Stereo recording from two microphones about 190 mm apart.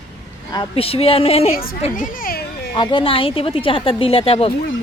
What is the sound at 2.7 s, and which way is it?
A woman's voice, 25° left (ahead or behind).